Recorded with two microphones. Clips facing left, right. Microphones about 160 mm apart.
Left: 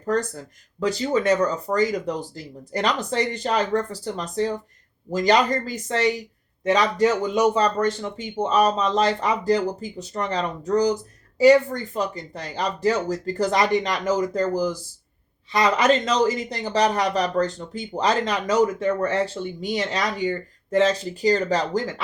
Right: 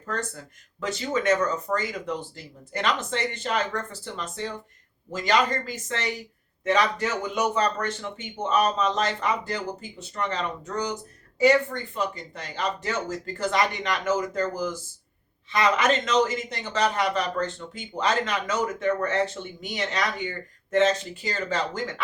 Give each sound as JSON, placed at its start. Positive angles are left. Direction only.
{"t": 0.0, "sound": "speech", "side_deg": 40}